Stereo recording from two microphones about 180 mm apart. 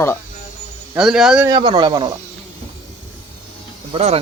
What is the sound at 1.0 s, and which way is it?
Speech, 5° right (ahead or behind).